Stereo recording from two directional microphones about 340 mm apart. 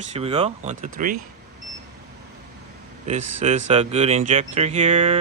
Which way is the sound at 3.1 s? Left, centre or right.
Right.